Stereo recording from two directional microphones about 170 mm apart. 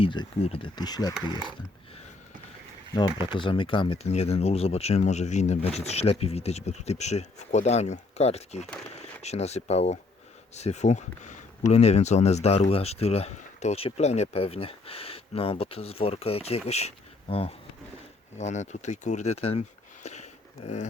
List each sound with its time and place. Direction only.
0.0 s speech: 30° left (ahead or behind)
3.2 s speech: 30° left (ahead or behind)